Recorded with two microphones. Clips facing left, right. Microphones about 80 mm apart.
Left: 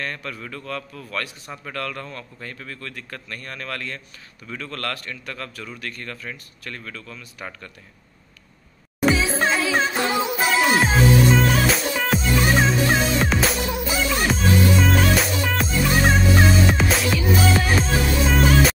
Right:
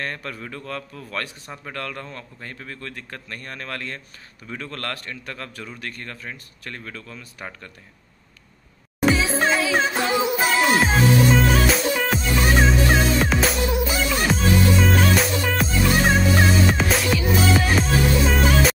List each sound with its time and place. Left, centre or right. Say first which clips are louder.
0.0 s a man's voice: even; right
9.0 s music: even; centre